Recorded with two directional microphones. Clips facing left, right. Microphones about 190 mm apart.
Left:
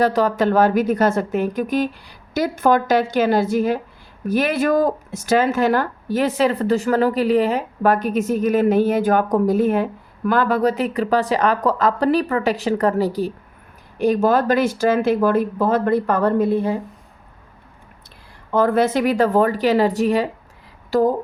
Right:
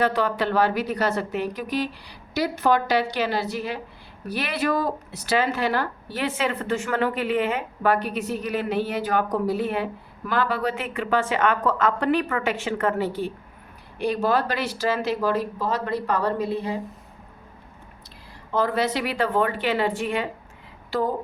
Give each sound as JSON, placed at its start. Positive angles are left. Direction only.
{"t": 0.0, "sound": "speech", "side_deg": 40}
{"t": 18.5, "sound": "speech", "side_deg": 50}